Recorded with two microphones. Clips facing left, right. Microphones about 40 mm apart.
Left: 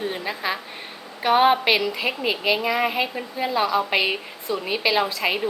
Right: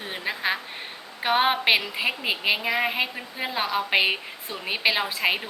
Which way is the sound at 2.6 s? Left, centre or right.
Centre.